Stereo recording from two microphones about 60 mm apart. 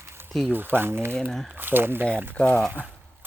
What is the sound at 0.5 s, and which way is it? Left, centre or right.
Speech, right.